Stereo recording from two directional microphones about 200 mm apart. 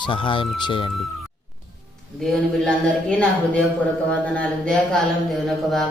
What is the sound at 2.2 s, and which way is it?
A man's voice, 5° left (ahead or behind).